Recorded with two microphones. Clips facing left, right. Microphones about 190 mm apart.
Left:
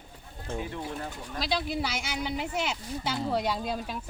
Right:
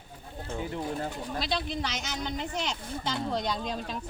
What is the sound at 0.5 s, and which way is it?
Speech, 25° right (ahead or behind).